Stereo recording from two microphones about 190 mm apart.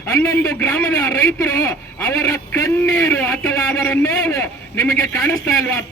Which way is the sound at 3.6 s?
20° left (ahead or behind).